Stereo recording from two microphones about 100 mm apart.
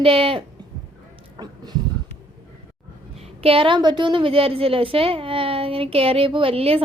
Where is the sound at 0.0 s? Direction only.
65° right (ahead or behind).